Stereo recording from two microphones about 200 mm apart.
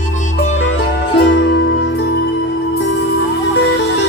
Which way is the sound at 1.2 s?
60° left (ahead or behind).